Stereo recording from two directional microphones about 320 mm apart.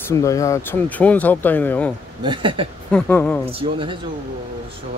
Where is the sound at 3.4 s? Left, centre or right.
Centre.